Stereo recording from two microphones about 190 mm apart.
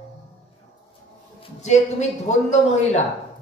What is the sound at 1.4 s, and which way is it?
A man's voice, 35° left (ahead or behind).